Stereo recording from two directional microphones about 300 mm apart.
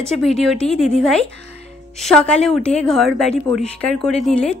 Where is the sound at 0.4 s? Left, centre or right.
Centre.